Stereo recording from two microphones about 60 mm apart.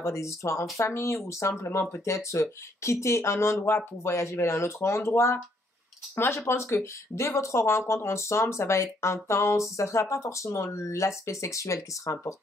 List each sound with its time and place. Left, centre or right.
0.0 s speech: left